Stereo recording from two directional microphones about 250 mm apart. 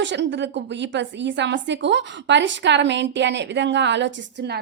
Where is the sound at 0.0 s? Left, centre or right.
Right.